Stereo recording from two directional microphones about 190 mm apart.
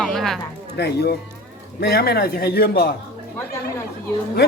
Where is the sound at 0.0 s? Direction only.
Centre (ahead or behind).